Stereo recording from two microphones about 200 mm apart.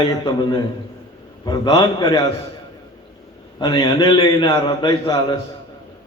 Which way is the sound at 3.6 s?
20° left (ahead or behind).